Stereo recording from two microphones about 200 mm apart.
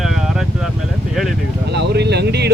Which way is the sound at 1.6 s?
55° right (ahead or behind).